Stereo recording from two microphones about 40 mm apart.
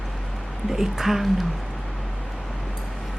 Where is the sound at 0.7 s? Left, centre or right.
Centre.